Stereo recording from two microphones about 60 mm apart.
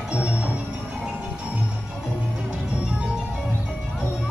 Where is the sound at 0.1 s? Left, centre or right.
Centre.